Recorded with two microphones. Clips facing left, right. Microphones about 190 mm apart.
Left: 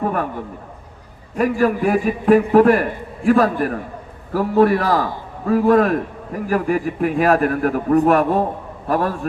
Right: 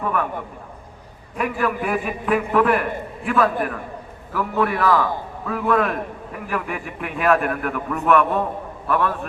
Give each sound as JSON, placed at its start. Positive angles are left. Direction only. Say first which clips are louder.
{"t": 0.0, "sound": "a man's voice", "louder": "left 3 dB", "side_deg": 40}
{"t": 1.4, "sound": "a man's voice", "louder": "left 6 dB", "side_deg": 35}